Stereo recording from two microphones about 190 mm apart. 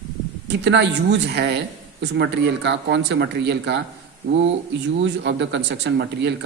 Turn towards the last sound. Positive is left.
turn(degrees=-65)  # may be behind; listen again after turning